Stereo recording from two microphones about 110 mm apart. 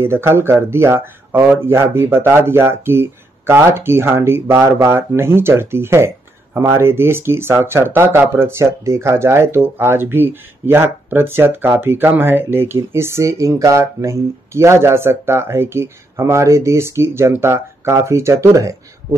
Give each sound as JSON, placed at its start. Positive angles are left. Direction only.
{"t": 0.0, "sound": "speech", "side_deg": -20}